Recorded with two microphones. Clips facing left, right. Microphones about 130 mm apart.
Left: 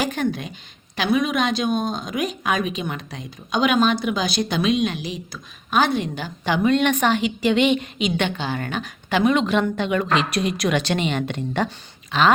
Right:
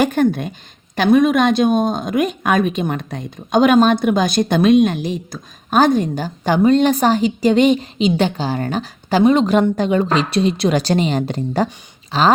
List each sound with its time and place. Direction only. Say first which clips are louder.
0.0 s speech: right 8 dB; 50° right (ahead or behind)
12.1 s dog: right 3 dB; 35° right (ahead or behind)